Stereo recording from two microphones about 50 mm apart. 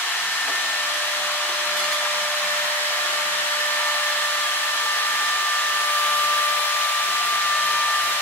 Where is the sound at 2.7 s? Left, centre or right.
Left.